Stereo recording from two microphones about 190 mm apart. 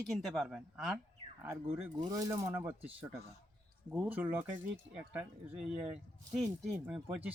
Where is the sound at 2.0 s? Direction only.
20° right (ahead or behind).